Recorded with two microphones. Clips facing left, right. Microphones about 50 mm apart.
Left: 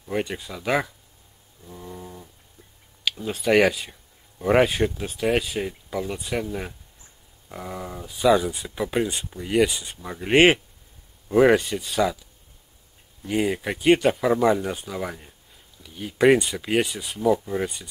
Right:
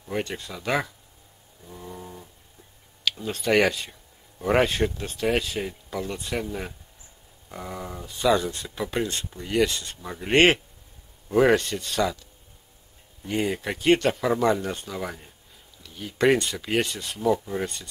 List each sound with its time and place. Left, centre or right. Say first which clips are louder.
0.0 s speech: left 2 dB; centre
1.6 s a sound: left 1 dB; centre
3.1 s speech: left 2 dB; centre